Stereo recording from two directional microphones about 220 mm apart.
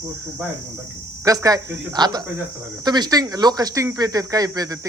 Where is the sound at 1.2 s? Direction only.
15° right (ahead or behind).